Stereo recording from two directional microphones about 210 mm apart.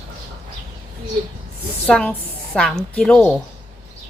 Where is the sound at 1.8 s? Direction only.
5° left (ahead or behind).